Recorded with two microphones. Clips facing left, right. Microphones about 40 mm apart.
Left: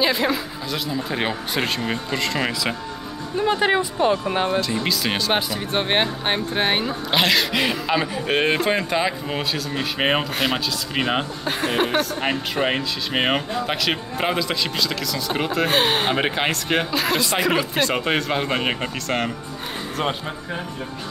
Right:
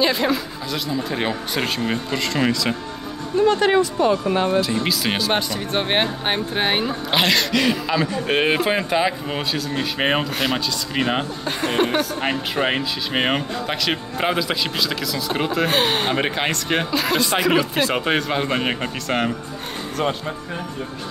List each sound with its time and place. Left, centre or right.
0.0 s speech: centre
4.6 s speech: centre
7.5 s speech: centre
8.3 s speech: centre